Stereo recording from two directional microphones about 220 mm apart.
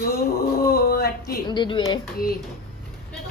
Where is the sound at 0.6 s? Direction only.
45° left (ahead or behind).